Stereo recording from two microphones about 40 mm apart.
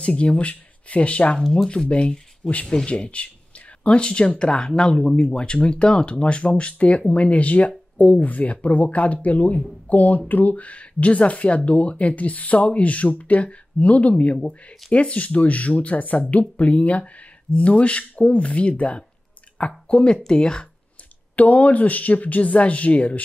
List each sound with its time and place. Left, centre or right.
0.0 s speech: left
14.3 s speech: left
21.4 s speech: left